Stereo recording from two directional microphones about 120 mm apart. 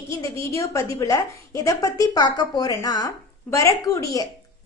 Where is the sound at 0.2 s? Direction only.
25° left (ahead or behind).